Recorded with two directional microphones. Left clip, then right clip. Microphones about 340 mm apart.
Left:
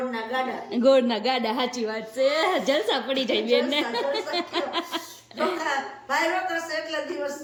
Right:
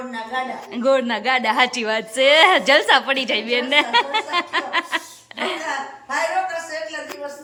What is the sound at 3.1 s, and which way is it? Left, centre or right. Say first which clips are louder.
Speech: right 3 dB; centre.